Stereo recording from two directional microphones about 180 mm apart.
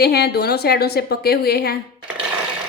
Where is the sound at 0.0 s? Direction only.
60° left (ahead or behind).